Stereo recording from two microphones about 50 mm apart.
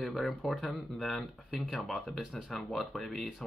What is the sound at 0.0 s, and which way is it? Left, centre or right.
Speech, centre.